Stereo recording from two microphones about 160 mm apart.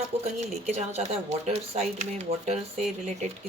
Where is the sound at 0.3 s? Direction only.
45° right (ahead or behind).